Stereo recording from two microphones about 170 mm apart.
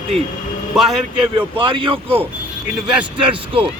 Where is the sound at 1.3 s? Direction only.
30° right (ahead or behind).